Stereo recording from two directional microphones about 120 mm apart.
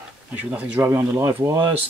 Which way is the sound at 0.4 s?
15° right (ahead or behind).